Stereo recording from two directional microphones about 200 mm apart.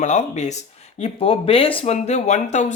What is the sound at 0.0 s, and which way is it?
Speech, 35° left (ahead or behind).